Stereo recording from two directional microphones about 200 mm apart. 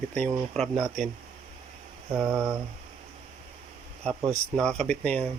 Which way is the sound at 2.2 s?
10° right (ahead or behind).